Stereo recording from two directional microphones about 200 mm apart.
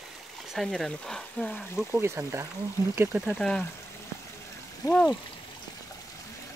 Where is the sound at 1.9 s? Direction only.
15° right (ahead or behind).